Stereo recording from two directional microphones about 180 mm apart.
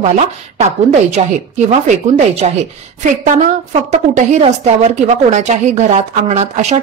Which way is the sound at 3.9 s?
40° right (ahead or behind).